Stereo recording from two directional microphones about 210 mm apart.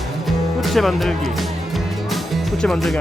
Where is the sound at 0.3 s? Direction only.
Centre (ahead or behind).